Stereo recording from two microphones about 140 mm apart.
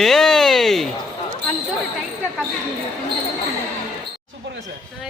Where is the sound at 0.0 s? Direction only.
5° left (ahead or behind).